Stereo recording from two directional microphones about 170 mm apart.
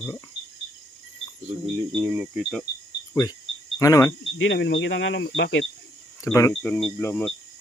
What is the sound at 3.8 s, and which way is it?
Speech, 20° left (ahead or behind).